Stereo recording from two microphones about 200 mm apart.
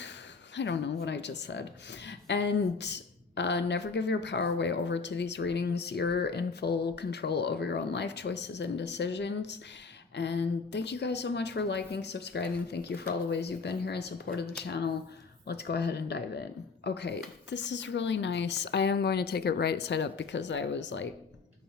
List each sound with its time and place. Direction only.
0.5 s speech: 60° left (ahead or behind)